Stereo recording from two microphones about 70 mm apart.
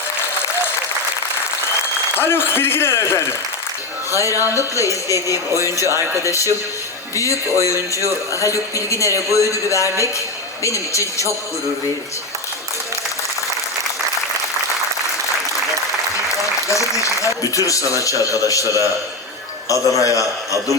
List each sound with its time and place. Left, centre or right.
2.1 s speech: left
4.1 s a man's voice: left
5.8 s speech: right
6.2 s a man's voice: left
16.6 s a man's voice: left